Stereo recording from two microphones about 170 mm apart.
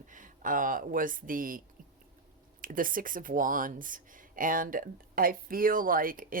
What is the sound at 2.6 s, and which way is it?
Speech, 55° right (ahead or behind).